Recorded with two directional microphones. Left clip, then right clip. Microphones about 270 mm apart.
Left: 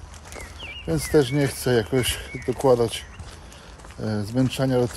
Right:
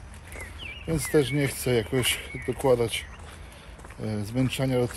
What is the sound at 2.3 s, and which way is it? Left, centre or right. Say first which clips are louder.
Speech: left 4 dB; left.